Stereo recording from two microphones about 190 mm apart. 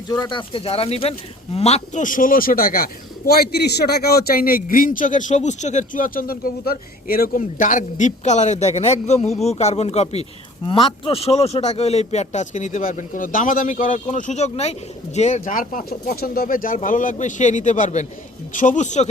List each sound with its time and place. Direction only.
0.1 s a man's voice: 25° left (ahead or behind); by 19.0 s 40° left (ahead or behind)